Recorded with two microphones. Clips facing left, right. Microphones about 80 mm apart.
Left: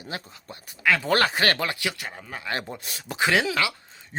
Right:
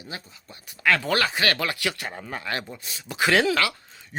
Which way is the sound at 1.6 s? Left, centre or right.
Left.